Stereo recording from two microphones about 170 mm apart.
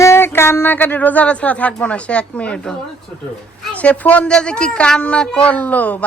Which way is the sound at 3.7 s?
10° left (ahead or behind).